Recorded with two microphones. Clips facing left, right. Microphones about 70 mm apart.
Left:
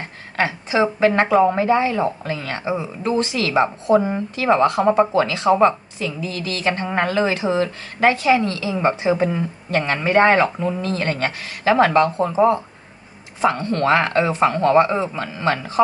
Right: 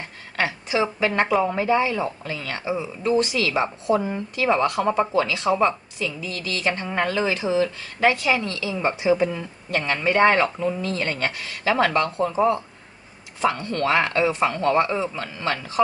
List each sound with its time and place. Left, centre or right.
0.4 s speech: left